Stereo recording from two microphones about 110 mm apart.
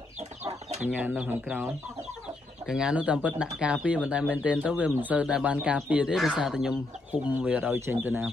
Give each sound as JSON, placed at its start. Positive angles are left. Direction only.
{"t": 0.5, "sound": "chicken", "side_deg": -90}
{"t": 0.8, "sound": "speech", "side_deg": -15}